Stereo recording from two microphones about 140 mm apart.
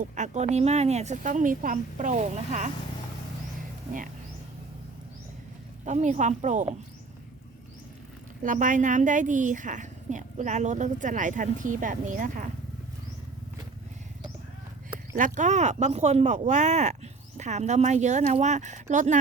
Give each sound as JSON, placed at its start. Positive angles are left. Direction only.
{"t": 0.0, "sound": "speech", "side_deg": -60}
{"t": 5.8, "sound": "speech", "side_deg": -60}
{"t": 8.4, "sound": "speech", "side_deg": -70}
{"t": 15.1, "sound": "speech", "side_deg": -65}